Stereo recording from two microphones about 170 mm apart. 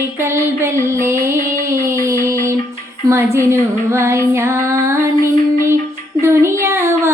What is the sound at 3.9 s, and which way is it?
Child singing, 15° right (ahead or behind).